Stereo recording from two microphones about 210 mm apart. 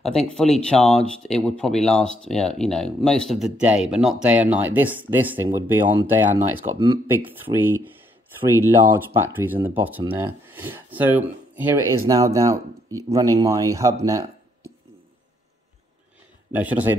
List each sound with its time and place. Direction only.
0.3 s speech: 5° left (ahead or behind); by 13.9 s 15° right (ahead or behind)
16.5 s speech: 5° right (ahead or behind)